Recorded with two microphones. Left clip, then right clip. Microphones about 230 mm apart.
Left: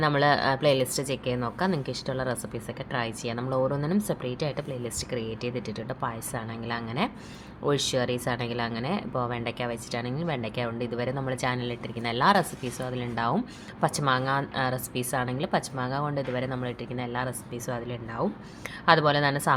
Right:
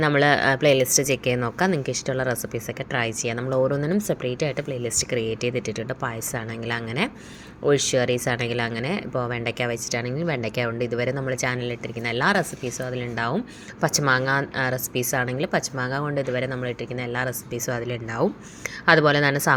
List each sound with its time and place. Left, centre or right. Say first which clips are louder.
0.0 s speech: right 4 dB; centre